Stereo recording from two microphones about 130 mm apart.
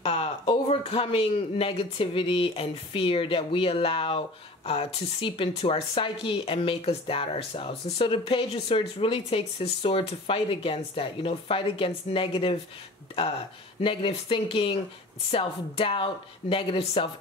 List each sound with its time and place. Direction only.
0.0 s speech: 50° left (ahead or behind)
13.7 s speech: 45° left (ahead or behind)